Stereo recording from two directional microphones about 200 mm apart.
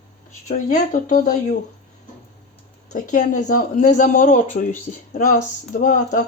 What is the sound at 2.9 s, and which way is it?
Speech, 40° left (ahead or behind).